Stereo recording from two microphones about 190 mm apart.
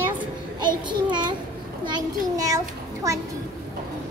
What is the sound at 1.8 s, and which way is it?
Speech, 20° right (ahead or behind).